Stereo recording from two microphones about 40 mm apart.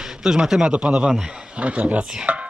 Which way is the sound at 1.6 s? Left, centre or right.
Right.